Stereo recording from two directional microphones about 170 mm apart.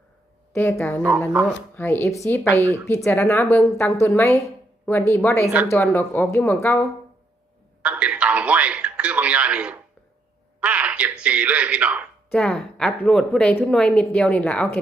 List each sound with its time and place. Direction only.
0.5 s speech: 15° left (ahead or behind)
1.0 s speech: 5° right (ahead or behind)
1.7 s speech: 10° left (ahead or behind)
2.6 s speech: 20° right (ahead or behind)
3.0 s speech: 10° left (ahead or behind)
7.8 s telephone: 5° right (ahead or behind)
10.6 s speech: 5° right (ahead or behind)
12.3 s a woman's voice: 5° left (ahead or behind)